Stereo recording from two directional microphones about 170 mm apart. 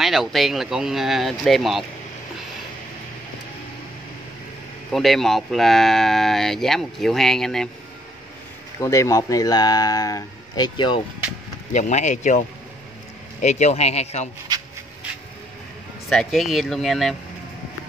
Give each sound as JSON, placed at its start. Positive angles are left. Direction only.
{"t": 0.0, "sound": "speech", "side_deg": 0}
{"t": 4.9, "sound": "speech", "side_deg": 0}
{"t": 8.8, "sound": "speech", "side_deg": 20}
{"t": 11.7, "sound": "speech", "side_deg": 45}
{"t": 16.1, "sound": "speech", "side_deg": 0}